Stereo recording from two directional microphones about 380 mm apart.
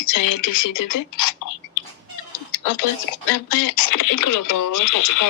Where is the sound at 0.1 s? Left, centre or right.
Left.